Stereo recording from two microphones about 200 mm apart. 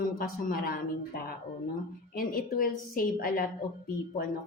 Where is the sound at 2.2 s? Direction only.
45° left (ahead or behind).